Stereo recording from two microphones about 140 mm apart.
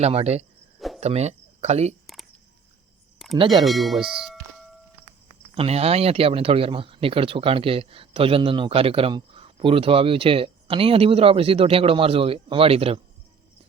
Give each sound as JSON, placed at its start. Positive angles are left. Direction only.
{"t": 0.0, "sound": "speech", "side_deg": -45}
{"t": 3.5, "sound": "speech", "side_deg": 0}
{"t": 5.5, "sound": "speech", "side_deg": -45}